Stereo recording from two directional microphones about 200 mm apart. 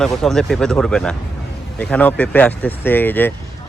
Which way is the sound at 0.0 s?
Centre (ahead or behind).